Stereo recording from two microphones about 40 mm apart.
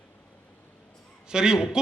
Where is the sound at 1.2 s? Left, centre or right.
Centre.